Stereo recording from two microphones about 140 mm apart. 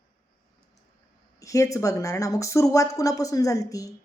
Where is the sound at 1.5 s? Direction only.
25° left (ahead or behind).